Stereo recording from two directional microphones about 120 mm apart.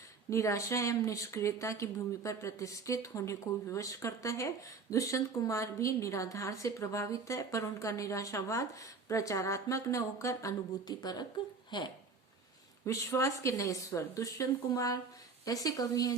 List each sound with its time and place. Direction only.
0.3 s speech: 25° left (ahead or behind); by 11.9 s 40° left (ahead or behind)
12.8 s speech: 25° left (ahead or behind)